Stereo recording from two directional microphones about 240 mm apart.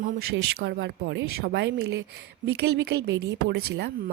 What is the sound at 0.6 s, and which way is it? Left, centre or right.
A woman's voice, right.